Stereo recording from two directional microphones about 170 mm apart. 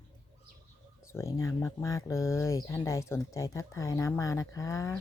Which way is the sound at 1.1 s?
15° left (ahead or behind).